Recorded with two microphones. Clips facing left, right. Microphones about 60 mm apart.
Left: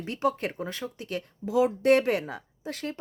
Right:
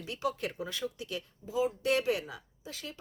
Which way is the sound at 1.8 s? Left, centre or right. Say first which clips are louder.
Left 7 dB; left.